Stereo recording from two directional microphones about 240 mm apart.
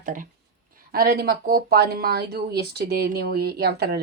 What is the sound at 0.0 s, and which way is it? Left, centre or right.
Speech, right.